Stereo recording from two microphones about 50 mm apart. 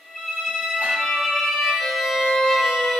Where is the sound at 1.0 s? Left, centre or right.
Centre.